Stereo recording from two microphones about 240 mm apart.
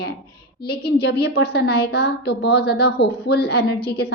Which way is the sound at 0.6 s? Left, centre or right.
Left.